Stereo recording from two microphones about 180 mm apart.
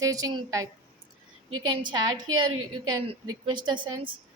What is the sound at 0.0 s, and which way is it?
Speech, 20° right (ahead or behind).